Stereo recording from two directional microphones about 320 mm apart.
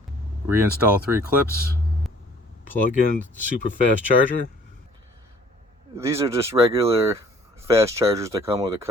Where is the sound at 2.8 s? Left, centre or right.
Left.